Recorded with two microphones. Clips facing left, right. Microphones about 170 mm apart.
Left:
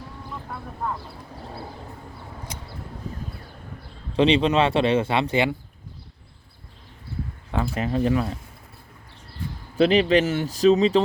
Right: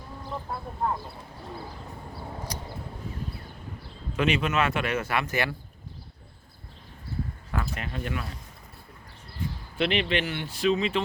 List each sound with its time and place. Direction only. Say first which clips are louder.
4.1 s speech: left 7 dB; 30° left (ahead or behind)
7.5 s speech: left 9 dB; 35° left (ahead or behind)
9.7 s speech: left 9 dB; 40° left (ahead or behind)